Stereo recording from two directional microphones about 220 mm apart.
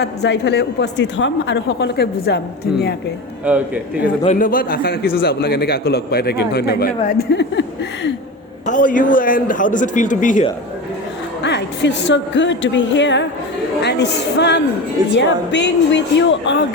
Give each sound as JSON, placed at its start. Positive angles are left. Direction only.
{"t": 0.0, "sound": "a man's voice", "side_deg": 50}
{"t": 3.5, "sound": "a man's voice", "side_deg": -10}
{"t": 4.2, "sound": "a man's voice", "side_deg": 35}
{"t": 8.6, "sound": "a man's voice", "side_deg": 35}
{"t": 11.4, "sound": "a woman's voice", "side_deg": 50}